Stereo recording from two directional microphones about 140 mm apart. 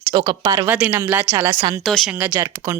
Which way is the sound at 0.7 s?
10° right (ahead or behind).